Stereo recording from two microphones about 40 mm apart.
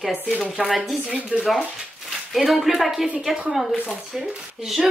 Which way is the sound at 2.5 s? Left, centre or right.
Centre.